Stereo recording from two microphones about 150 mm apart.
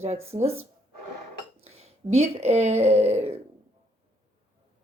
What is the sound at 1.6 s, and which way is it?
Speech, 45° right (ahead or behind).